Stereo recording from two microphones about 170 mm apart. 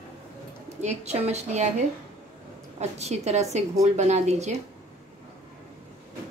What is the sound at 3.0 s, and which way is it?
A woman's voice, 40° right (ahead or behind).